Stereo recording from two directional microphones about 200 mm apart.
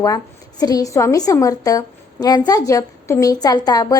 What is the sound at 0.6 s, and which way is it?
A woman's voice, 20° left (ahead or behind).